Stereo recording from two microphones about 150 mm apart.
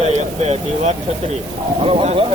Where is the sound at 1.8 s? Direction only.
35° right (ahead or behind).